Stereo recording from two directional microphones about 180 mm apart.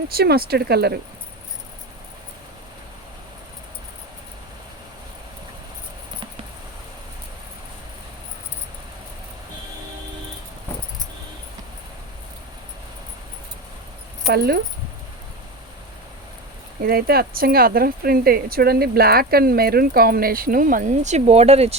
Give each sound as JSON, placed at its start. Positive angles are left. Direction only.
{"t": 0.1, "sound": "speech", "side_deg": -60}
{"t": 14.3, "sound": "speech", "side_deg": -60}
{"t": 16.8, "sound": "speech", "side_deg": -55}